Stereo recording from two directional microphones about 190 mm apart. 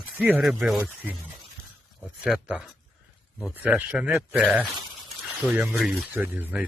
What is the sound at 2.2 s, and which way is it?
Speech, 5° right (ahead or behind).